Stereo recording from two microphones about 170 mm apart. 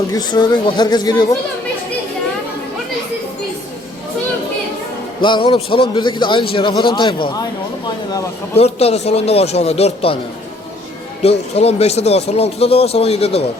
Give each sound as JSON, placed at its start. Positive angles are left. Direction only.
{"t": 0.1, "sound": "speech", "side_deg": 25}
{"t": 5.2, "sound": "speech", "side_deg": 30}
{"t": 8.5, "sound": "speech", "side_deg": 40}
{"t": 11.2, "sound": "speech", "side_deg": 40}